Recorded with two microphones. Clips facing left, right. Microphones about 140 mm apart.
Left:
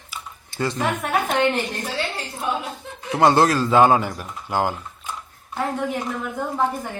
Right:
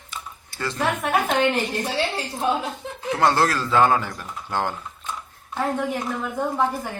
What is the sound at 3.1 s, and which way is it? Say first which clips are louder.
A man's voice: left 4 dB; 20° left (ahead or behind).